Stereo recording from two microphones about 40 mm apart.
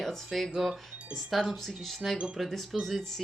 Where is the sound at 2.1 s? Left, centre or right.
Centre.